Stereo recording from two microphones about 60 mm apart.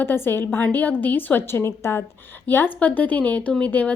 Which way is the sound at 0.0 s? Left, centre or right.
Left.